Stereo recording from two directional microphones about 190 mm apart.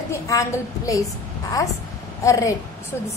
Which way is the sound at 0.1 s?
15° left (ahead or behind).